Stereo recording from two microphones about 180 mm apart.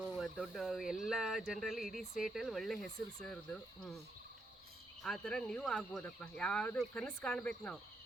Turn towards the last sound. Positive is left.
turn(degrees=5)  # may be behind; listen again after turning